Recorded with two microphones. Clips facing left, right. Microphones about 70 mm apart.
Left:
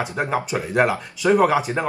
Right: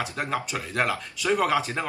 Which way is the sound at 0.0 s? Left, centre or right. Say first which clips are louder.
Left 5 dB; left.